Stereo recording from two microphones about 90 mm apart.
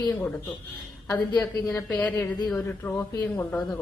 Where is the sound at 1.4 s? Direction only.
25° left (ahead or behind).